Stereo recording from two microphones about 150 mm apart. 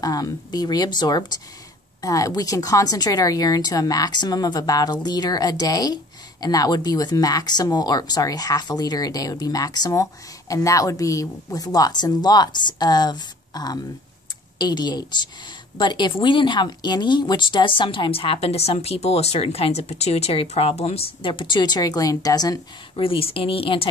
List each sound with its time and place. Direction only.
0.0 s speech: 25° left (ahead or behind)